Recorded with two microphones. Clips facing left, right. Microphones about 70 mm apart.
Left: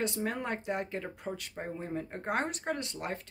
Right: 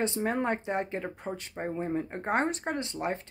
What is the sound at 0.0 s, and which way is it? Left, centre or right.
Speech, right.